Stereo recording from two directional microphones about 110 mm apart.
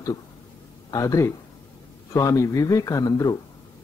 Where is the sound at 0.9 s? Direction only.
30° left (ahead or behind).